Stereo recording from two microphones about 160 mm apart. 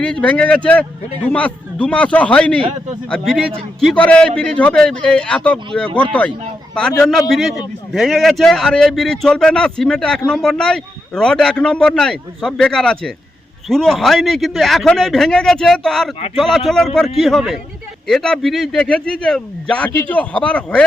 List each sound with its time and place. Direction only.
0.0 s a man's voice: 5° left (ahead or behind)